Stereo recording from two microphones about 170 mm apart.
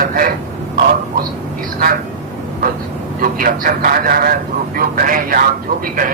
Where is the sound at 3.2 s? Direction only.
55° right (ahead or behind).